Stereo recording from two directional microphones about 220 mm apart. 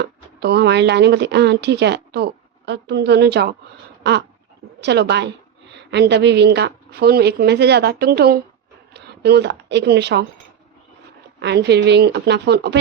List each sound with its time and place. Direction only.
0.0 s a woman's voice: 50° right (ahead or behind)
11.3 s a woman's voice: 50° right (ahead or behind)